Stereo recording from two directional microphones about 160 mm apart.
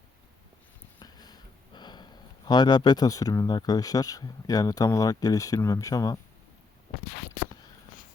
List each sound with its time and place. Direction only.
0.9 s speech: 25° left (ahead or behind)